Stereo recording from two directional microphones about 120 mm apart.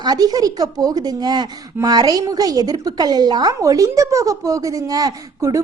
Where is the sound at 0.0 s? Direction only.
35° right (ahead or behind).